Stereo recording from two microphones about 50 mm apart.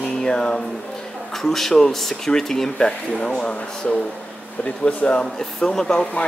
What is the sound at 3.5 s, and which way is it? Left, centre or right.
Speech, left.